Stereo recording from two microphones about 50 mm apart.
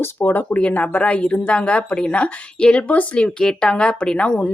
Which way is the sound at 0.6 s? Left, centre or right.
Left.